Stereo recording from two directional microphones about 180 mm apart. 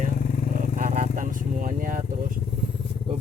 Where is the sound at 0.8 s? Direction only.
50° right (ahead or behind).